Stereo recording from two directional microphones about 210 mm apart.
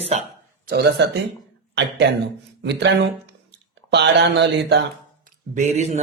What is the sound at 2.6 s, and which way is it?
Speech, 55° right (ahead or behind).